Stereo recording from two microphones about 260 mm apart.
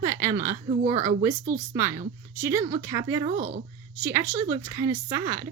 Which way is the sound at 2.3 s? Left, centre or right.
Centre.